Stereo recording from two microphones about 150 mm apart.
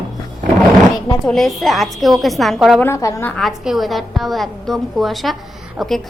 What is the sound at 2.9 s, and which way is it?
Speech, 20° left (ahead or behind).